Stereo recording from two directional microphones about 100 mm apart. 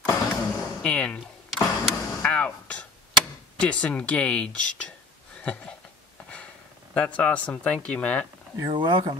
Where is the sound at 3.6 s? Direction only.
10° left (ahead or behind).